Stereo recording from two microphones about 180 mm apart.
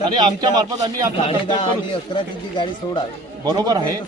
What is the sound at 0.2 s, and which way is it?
Speech, 25° right (ahead or behind).